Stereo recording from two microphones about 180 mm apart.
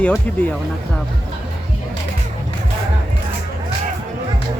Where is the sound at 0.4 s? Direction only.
5° left (ahead or behind).